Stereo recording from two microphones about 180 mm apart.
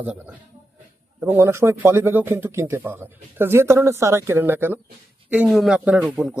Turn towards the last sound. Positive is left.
turn(degrees=-5)  # may be behind; listen again after turning